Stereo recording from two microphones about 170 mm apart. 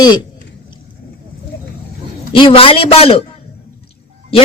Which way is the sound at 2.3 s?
30° left (ahead or behind).